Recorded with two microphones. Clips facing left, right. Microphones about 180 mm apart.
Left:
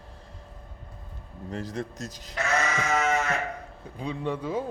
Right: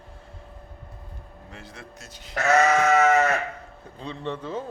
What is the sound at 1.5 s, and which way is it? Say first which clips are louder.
Speech: left 11 dB; 40° left (ahead or behind).